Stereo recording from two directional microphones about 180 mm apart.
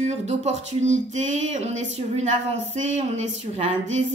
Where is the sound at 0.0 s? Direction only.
40° right (ahead or behind).